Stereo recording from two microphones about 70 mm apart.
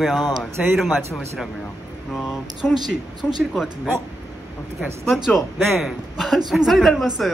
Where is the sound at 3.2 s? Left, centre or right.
Right.